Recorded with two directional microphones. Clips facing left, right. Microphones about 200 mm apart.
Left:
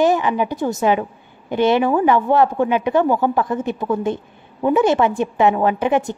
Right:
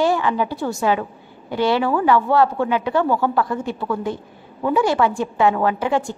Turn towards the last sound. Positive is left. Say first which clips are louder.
# left 2 dB
turn(degrees=20)  # may be behind; listen again after turning